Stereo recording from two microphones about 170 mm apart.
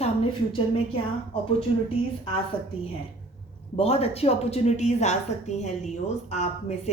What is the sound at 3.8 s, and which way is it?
A woman's voice, 35° left (ahead or behind).